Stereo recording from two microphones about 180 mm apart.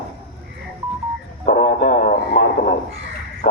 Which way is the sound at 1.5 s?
50° left (ahead or behind).